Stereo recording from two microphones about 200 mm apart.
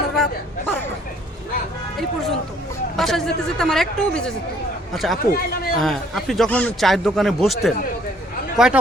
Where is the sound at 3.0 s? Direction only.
Centre (ahead or behind).